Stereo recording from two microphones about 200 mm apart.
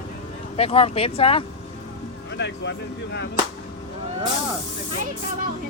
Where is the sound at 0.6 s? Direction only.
30° left (ahead or behind).